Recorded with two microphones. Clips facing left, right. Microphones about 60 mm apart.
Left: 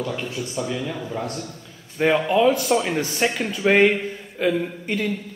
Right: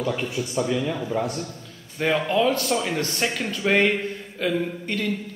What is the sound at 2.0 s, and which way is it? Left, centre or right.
A woman's voice, centre.